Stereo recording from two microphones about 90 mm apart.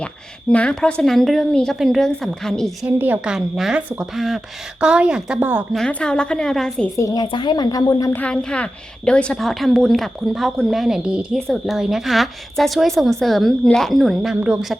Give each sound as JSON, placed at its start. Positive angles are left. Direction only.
{"t": 0.5, "sound": "a woman's voice", "side_deg": 10}
{"t": 2.8, "sound": "a woman's voice", "side_deg": -20}
{"t": 3.2, "sound": "a woman's voice", "side_deg": -5}
{"t": 5.7, "sound": "a woman's voice", "side_deg": 10}
{"t": 6.9, "sound": "a woman's voice", "side_deg": 35}
{"t": 7.3, "sound": "a woman's voice", "side_deg": 60}
{"t": 8.1, "sound": "a woman's voice", "side_deg": 10}
{"t": 11.3, "sound": "a woman's voice", "side_deg": 5}